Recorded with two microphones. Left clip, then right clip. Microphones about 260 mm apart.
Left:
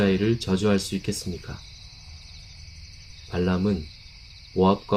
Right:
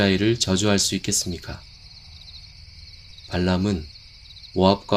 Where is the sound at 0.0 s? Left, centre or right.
Right.